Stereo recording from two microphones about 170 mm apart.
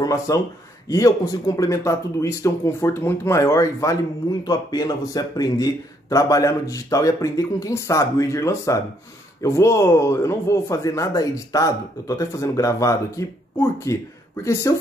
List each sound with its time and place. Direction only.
0.0 s speech: 20° left (ahead or behind)